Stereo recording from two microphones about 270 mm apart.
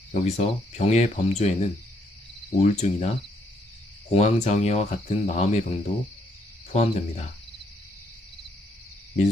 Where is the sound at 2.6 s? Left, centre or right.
Left.